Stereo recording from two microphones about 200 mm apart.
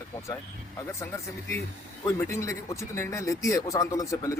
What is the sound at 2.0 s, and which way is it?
Speech, 15° left (ahead or behind).